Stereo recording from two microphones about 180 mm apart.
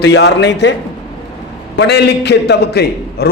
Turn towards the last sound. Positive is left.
turn(degrees=65)  # may be behind; listen again after turning